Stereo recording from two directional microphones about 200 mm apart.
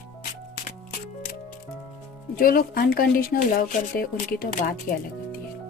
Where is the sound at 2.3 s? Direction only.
45° left (ahead or behind).